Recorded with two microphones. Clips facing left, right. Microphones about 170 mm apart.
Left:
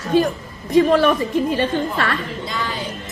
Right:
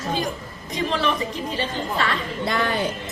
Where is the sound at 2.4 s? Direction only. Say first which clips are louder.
Right 3 dB; 60° right (ahead or behind).